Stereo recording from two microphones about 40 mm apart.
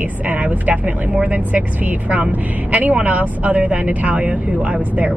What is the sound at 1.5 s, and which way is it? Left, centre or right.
Speech, right.